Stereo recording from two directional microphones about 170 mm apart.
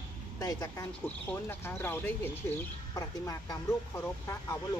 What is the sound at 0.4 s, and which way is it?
Speech, 20° left (ahead or behind).